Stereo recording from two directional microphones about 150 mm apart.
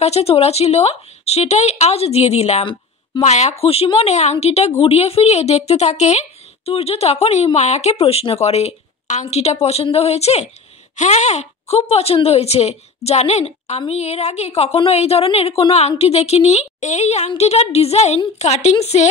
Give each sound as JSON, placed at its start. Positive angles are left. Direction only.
{"t": 0.0, "sound": "a woman's voice", "side_deg": 45}